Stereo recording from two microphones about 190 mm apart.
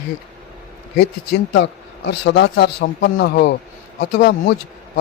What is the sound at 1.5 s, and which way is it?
A man's voice, 70° left (ahead or behind).